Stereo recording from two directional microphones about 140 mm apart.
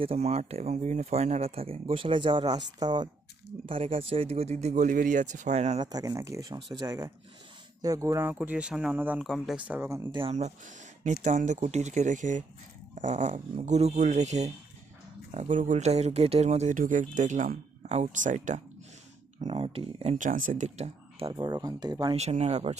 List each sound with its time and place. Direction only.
0.0 s speech: 45° right (ahead or behind)
5.8 s speech: 25° right (ahead or behind)
9.2 s speech: centre (ahead or behind)
9.6 s speech: 10° right (ahead or behind)
10.1 s speech: 35° right (ahead or behind)
10.3 s speech: 55° right (ahead or behind)
19.4 s speech: 45° right (ahead or behind)
20.1 s speech: 65° right (ahead or behind); by 21.3 s 45° right (ahead or behind)
21.3 s speech: 30° right (ahead or behind)
22.1 s speech: 50° right (ahead or behind)